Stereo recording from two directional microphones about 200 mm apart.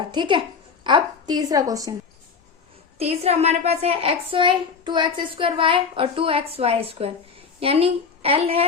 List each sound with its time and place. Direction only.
0.0 s a child's voice: 25° right (ahead or behind)
3.0 s a woman's voice: 30° right (ahead or behind)